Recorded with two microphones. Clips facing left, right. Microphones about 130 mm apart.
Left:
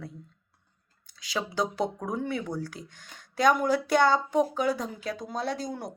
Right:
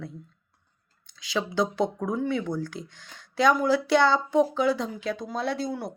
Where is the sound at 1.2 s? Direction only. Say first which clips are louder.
Right 3 dB; 40° left (ahead or behind).